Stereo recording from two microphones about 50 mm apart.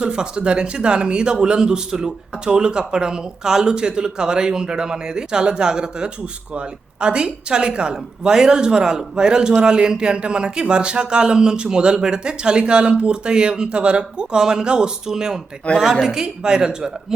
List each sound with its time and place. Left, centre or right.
0.0 s speech: centre